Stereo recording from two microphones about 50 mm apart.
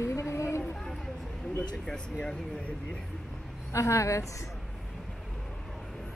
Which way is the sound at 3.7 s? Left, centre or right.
Left.